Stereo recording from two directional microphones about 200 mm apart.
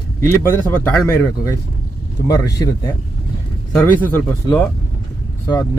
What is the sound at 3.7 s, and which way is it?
Speech, 10° left (ahead or behind).